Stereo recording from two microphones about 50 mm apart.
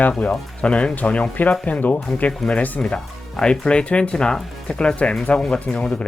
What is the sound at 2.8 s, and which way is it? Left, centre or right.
Speech, centre.